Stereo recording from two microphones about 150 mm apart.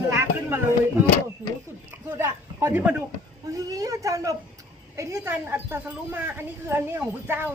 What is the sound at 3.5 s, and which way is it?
A woman's voice, 20° right (ahead or behind).